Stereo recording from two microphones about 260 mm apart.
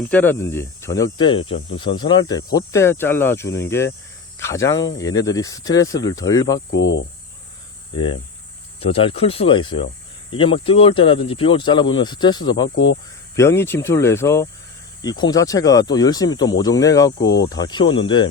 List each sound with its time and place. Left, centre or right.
0.1 s speech: centre
4.4 s cricket: centre
4.9 s speech: centre
6.7 s speech: left
8.8 s speech: left
12.6 s speech: left
13.3 s speech: centre